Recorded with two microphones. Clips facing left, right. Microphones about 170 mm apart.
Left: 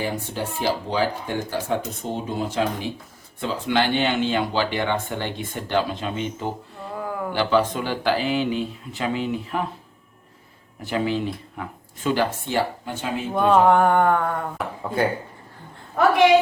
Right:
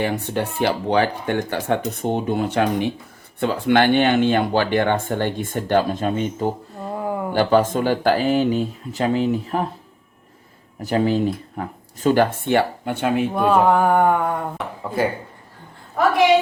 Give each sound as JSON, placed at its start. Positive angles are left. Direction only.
{"t": 0.0, "sound": "speech", "side_deg": -65}
{"t": 6.9, "sound": "a sound", "side_deg": -25}
{"t": 7.3, "sound": "speech", "side_deg": -45}
{"t": 10.8, "sound": "speech", "side_deg": -40}
{"t": 13.3, "sound": "mantra", "side_deg": -5}